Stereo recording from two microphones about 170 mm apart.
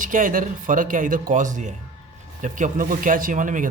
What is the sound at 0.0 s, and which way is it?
Speech, 50° right (ahead or behind).